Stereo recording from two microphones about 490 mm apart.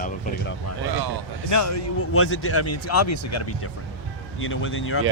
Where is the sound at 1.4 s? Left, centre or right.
Left.